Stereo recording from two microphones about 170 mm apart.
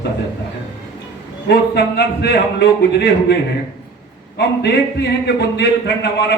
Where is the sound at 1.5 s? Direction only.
75° left (ahead or behind).